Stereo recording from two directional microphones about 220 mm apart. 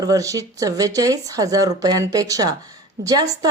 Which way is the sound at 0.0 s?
15° right (ahead or behind).